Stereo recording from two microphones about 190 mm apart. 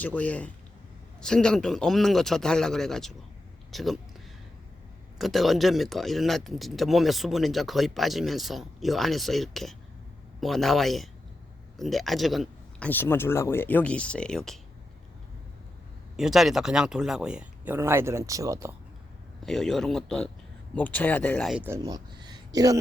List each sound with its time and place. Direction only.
0.0 s speech: 10° left (ahead or behind)
5.1 s speech: centre (ahead or behind)
16.1 s speech: centre (ahead or behind); by 18.7 s 15° right (ahead or behind)
19.5 s speech: centre (ahead or behind)
21.6 s speech: 15° right (ahead or behind)